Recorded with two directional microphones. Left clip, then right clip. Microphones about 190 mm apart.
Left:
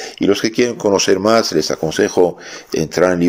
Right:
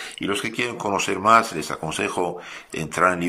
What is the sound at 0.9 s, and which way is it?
Speech, 45° left (ahead or behind).